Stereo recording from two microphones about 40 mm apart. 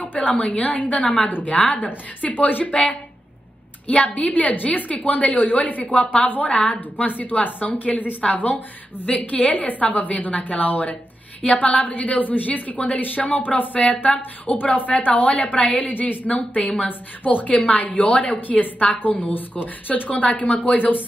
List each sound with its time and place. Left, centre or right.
0.0 s a sound: left
0.4 s a woman's voice: left
2.2 s a woman's voice: left